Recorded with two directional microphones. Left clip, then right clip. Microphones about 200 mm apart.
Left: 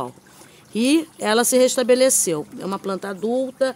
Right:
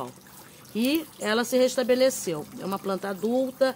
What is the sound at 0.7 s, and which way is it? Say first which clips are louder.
Speech: left 7 dB; 50° left (ahead or behind).